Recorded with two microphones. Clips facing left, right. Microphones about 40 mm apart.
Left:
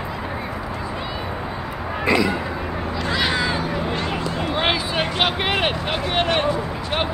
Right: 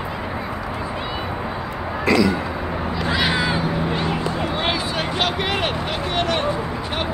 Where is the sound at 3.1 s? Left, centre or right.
Centre.